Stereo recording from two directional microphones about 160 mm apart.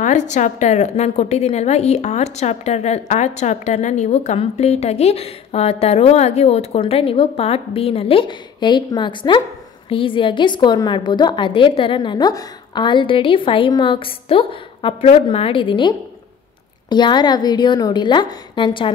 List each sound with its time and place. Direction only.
0.0 s a woman's voice: 50° left (ahead or behind); by 15.9 s 30° left (ahead or behind)
16.9 s a woman's voice: 25° left (ahead or behind)